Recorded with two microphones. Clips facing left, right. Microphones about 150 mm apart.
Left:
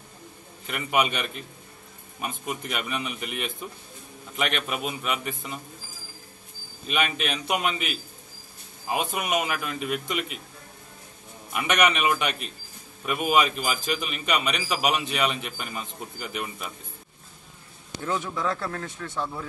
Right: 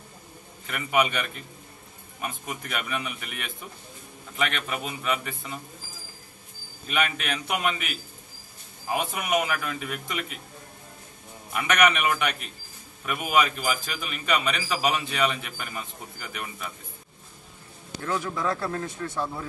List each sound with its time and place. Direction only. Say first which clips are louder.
0.7 s a man's voice: even; 20° left (ahead or behind)
6.9 s a man's voice: left 1 dB; 20° left (ahead or behind)
11.5 s a man's voice: right 1 dB; 20° left (ahead or behind)
18.0 s a man's voice: even; 15° left (ahead or behind)
18.3 s speech: even; 5° right (ahead or behind)
18.6 s speech: right 3 dB; 15° right (ahead or behind)